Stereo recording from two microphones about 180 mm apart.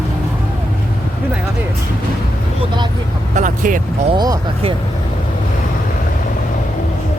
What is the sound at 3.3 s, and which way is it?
Vehicle, 45° right (ahead or behind).